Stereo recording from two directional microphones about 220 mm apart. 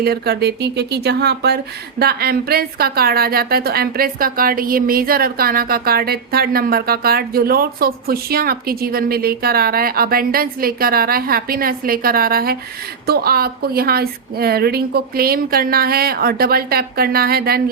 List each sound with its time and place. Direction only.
0.0 s a woman's voice: 45° right (ahead or behind)